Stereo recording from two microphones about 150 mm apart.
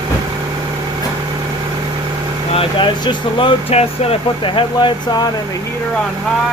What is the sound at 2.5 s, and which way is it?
Speech, 35° left (ahead or behind).